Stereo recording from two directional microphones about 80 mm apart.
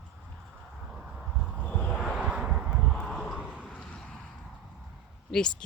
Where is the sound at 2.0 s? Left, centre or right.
Centre.